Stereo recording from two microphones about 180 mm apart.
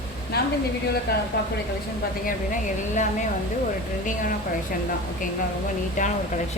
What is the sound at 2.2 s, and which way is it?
Speech, 45° left (ahead or behind).